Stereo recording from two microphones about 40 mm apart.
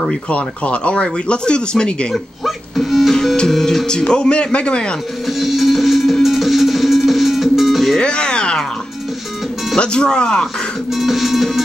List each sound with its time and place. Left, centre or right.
0.3 s speech: left
2.1 s music: centre
3.4 s speech: centre
4.1 s speech: left
5.2 s music: centre
8.0 s music: left
9.8 s speech: left
10.9 s music: centre